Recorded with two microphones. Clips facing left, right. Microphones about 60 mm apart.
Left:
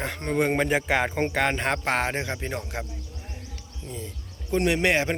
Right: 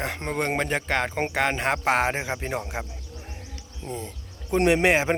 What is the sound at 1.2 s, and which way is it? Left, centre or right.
Speech, centre.